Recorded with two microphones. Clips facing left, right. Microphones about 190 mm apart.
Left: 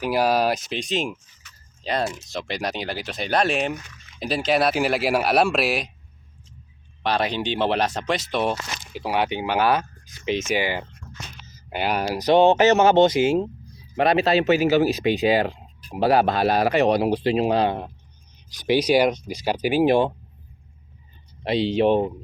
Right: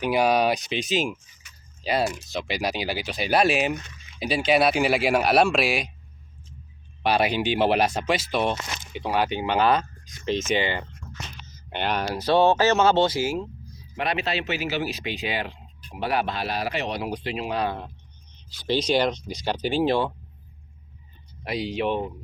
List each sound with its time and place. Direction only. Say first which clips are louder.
0.0 s speech: even; centre (ahead or behind)
1.4 s a sound: right 1 dB; 10° right (ahead or behind)
2.1 s speech: even; centre (ahead or behind)
7.0 s speech: right 1 dB; 10° right (ahead or behind)
9.1 s speech: left 1 dB; 15° left (ahead or behind)
13.9 s speech: left 8 dB; 40° left (ahead or behind)
17.1 s speech: left 9 dB; 35° left (ahead or behind)
18.3 s speech: left 5 dB; 15° left (ahead or behind)
21.4 s speech: left 7 dB; 25° left (ahead or behind)